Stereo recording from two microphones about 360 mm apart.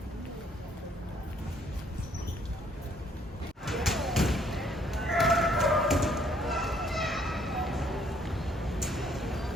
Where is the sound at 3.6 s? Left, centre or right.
Centre.